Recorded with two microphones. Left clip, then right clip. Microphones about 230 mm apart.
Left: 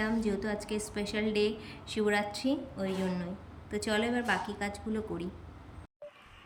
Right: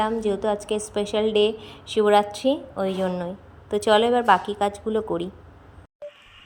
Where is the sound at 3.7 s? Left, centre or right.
Centre.